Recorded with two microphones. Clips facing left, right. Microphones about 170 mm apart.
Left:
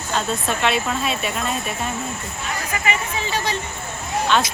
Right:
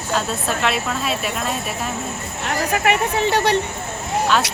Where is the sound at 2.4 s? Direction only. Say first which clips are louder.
Right 6 dB; 65° right (ahead or behind).